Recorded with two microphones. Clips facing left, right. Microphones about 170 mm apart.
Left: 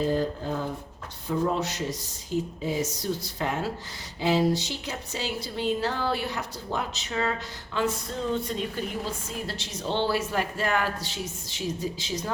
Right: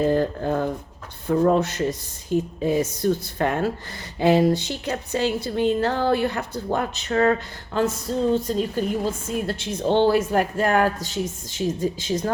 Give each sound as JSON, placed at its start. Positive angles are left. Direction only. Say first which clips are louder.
{"t": 0.0, "sound": "speech", "louder": "right 5 dB", "side_deg": -60}